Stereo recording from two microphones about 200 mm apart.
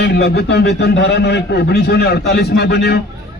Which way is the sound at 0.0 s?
55° left (ahead or behind).